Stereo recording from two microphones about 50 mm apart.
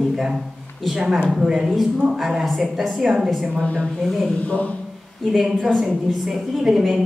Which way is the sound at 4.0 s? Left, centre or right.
Centre.